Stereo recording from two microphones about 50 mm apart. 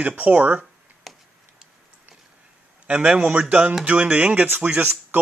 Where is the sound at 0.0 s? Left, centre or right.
Right.